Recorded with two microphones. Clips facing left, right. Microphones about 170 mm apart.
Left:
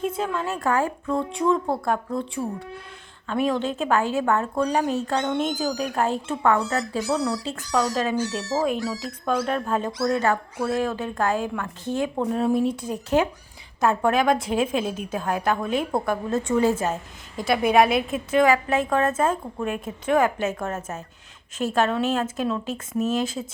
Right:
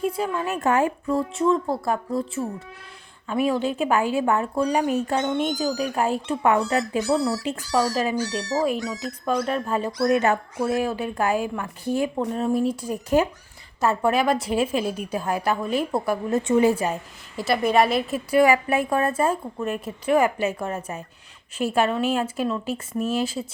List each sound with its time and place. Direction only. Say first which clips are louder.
0.0 s a woman's voice: right 1 dB; 10° right (ahead or behind)
6.4 s speech: right 1 dB; 20° right (ahead or behind)
7.0 s speech: right 2 dB; centre (ahead or behind)
7.4 s speech: right 1 dB; 15° right (ahead or behind)
10.1 s a woman's voice: right 2 dB; 20° right (ahead or behind)
16.3 s speech: right 3 dB; 15° right (ahead or behind); by 18.2 s centre (ahead or behind)
18.3 s a woman's voice: right 1 dB; 10° right (ahead or behind)